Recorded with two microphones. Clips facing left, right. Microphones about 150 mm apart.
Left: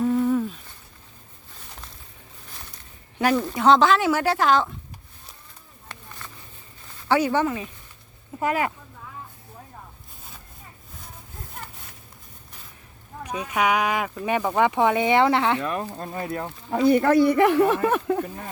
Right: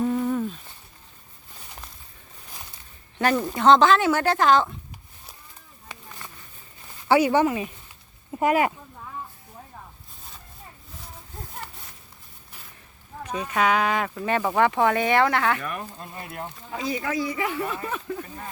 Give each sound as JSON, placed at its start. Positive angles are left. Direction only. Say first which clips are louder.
{"t": 0.0, "sound": "a sound", "louder": "left 3 dB", "side_deg": -5}
{"t": 3.3, "sound": "speech", "louder": "right 1 dB", "side_deg": 0}
{"t": 7.1, "sound": "speech", "louder": "right 2 dB", "side_deg": -10}
{"t": 13.2, "sound": "speech", "louder": "even", "side_deg": 10}
{"t": 16.2, "sound": "speech", "louder": "left 6 dB", "side_deg": 50}